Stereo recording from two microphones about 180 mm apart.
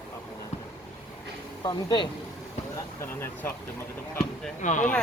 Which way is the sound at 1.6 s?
25° left (ahead or behind).